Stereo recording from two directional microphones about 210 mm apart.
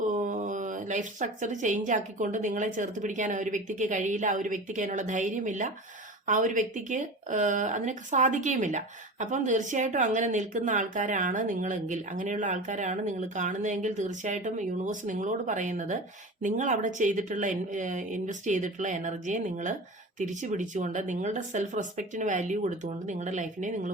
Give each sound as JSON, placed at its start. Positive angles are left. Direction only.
{"t": 0.0, "sound": "speech", "side_deg": -35}